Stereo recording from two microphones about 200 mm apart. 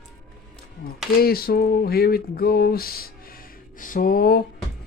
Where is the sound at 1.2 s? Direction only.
50° left (ahead or behind).